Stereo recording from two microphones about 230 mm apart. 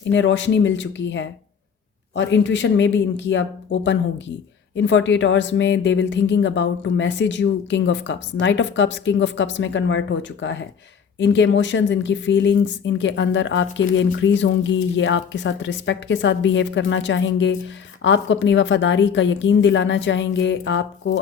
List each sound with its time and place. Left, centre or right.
0.1 s speech: left